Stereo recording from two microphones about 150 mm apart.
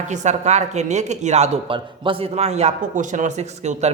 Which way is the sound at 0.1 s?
50° right (ahead or behind).